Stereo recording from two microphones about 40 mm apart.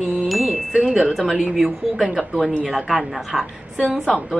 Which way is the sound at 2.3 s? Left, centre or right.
Centre.